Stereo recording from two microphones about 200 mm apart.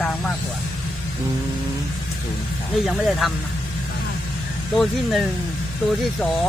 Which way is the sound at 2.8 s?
Centre (ahead or behind).